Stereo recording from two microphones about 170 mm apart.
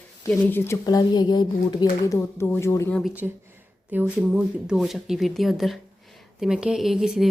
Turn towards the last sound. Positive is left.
turn(degrees=-5)  # may be behind; listen again after turning